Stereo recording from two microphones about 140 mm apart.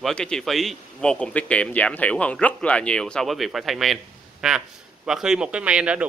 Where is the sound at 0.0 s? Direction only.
5° left (ahead or behind).